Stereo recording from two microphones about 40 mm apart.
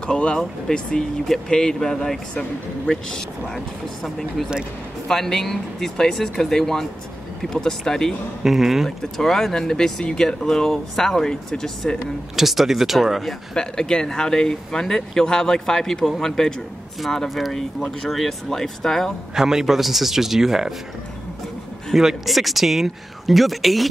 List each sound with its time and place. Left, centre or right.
0.0 s speech: left
3.5 s speech: centre
8.5 s a man's voice: centre
8.8 s speech: centre
12.4 s speech: centre
13.6 s speech: centre
19.3 s a man's voice: centre
21.9 s speech: centre